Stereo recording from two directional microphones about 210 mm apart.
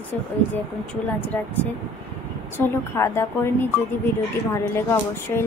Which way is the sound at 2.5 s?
10° left (ahead or behind).